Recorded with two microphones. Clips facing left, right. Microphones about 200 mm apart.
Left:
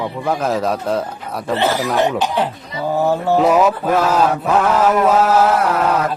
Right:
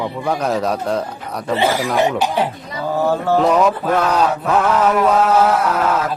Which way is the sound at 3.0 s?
15° left (ahead or behind).